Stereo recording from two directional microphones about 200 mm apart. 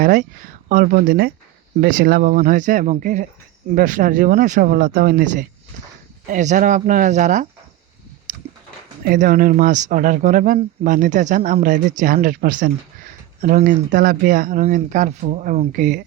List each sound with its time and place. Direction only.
0.0 s speech: 40° right (ahead or behind)
9.0 s speech: 45° right (ahead or behind)